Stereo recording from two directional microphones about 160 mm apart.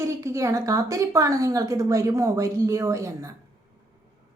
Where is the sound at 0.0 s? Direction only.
20° right (ahead or behind).